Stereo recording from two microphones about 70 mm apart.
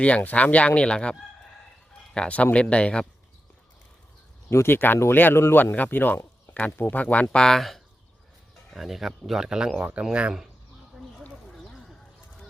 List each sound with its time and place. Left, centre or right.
0.0 s speech: left
2.1 s speech: centre
4.4 s speech: left; by 10.3 s centre
11.4 s a sound: centre